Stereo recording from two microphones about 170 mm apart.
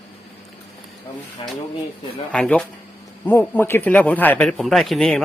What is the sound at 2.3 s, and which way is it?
A woman's voice, 5° left (ahead or behind).